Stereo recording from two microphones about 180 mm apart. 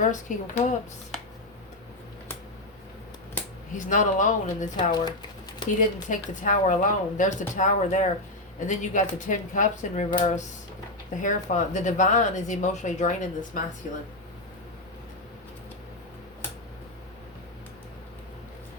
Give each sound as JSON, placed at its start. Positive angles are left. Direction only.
{"t": 0.0, "sound": "speech", "side_deg": 45}
{"t": 3.8, "sound": "speech", "side_deg": 45}
{"t": 4.9, "sound": "speech", "side_deg": 25}
{"t": 6.1, "sound": "speech", "side_deg": 45}